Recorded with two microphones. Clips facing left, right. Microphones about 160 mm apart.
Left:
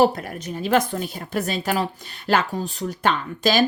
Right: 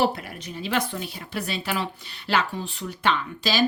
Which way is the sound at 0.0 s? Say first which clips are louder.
Left 6 dB; 45° left (ahead or behind).